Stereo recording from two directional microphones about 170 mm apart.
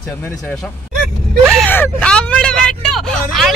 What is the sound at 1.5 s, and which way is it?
Whimper, 10° left (ahead or behind).